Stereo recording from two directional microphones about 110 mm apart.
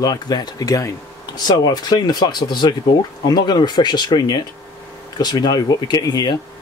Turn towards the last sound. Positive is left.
turn(degrees=35)  # may be behind; listen again after turning